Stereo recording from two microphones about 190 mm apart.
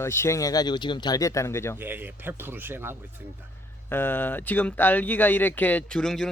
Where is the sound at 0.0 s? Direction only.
15° left (ahead or behind).